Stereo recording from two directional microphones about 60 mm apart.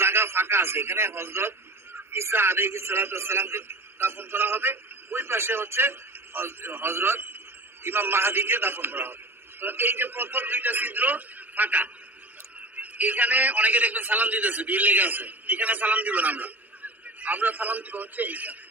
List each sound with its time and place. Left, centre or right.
0.0 s a man's voice: right